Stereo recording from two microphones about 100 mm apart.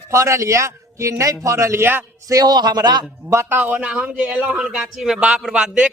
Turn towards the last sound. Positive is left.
turn(degrees=-10)  # may be behind; listen again after turning